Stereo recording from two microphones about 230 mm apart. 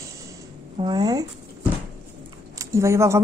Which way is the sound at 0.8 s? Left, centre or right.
Centre.